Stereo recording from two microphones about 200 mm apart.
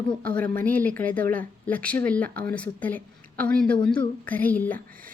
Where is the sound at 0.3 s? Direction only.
5° left (ahead or behind).